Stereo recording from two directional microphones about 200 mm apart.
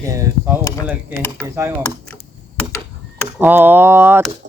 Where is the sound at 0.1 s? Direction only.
15° right (ahead or behind).